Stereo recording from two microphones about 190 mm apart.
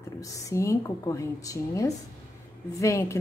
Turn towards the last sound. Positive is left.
turn(degrees=15)  # may be behind; listen again after turning